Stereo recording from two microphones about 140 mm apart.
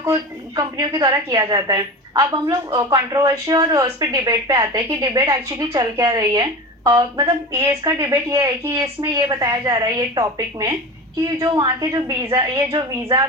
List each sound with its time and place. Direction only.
0.0 s a woman's voice: 25° right (ahead or behind)